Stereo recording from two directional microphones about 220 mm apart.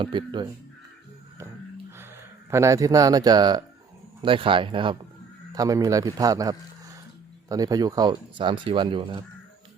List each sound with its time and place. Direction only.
0.0 s speech: 20° right (ahead or behind)
2.5 s a man's voice: 15° right (ahead or behind)